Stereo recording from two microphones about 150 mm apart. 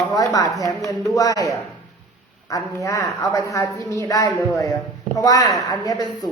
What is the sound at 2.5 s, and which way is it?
Speech, 20° left (ahead or behind).